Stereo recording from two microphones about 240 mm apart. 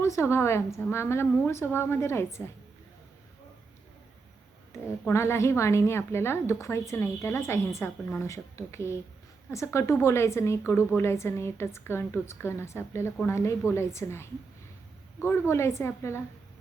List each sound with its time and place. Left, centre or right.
0.0 s a woman's voice: centre
4.7 s a woman's voice: centre